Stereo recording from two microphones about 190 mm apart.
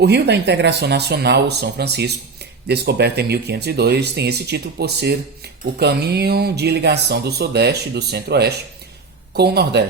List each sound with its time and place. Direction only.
0.0 s speech: 60° right (ahead or behind)